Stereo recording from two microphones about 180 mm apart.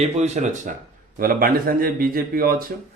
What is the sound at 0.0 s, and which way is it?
Speech, 40° right (ahead or behind).